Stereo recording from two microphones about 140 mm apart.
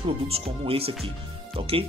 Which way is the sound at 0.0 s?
45° right (ahead or behind).